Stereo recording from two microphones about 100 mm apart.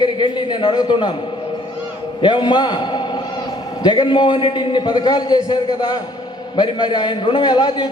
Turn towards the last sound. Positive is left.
turn(degrees=45)  # may be behind; listen again after turning